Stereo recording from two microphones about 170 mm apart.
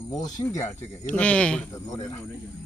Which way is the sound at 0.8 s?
10° left (ahead or behind).